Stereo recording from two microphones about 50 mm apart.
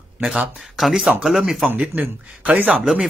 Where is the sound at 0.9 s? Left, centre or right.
Centre.